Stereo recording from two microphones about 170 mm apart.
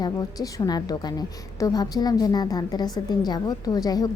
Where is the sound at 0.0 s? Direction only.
20° left (ahead or behind).